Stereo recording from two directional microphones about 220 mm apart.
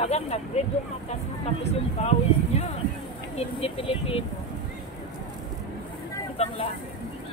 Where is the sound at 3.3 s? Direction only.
25° left (ahead or behind).